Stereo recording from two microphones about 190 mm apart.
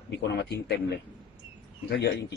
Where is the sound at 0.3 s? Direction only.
60° left (ahead or behind).